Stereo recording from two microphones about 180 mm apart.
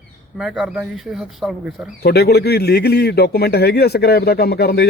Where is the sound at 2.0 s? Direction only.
60° left (ahead or behind).